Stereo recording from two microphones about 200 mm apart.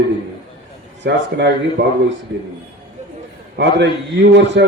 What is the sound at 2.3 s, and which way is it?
Speech, 60° right (ahead or behind).